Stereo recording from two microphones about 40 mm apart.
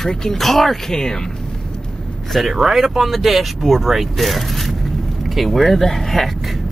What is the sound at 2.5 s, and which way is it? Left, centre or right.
Speech, centre.